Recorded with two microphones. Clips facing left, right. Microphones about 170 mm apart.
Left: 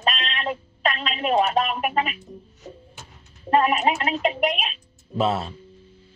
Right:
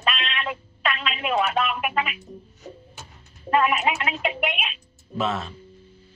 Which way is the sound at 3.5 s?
35° left (ahead or behind).